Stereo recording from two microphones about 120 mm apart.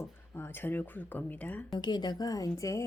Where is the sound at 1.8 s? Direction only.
35° left (ahead or behind).